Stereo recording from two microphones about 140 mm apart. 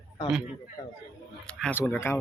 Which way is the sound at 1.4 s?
5° left (ahead or behind).